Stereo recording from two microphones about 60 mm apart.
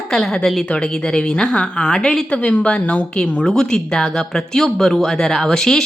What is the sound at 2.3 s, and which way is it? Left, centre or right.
A woman's voice, left.